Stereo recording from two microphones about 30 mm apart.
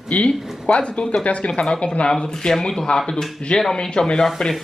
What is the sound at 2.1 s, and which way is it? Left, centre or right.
Speech, left.